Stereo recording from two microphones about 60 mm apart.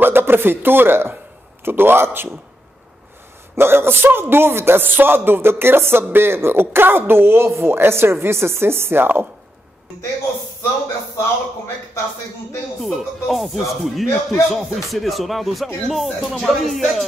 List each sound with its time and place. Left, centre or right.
0.0 s speech: right
3.5 s speech: right
12.7 s speech: centre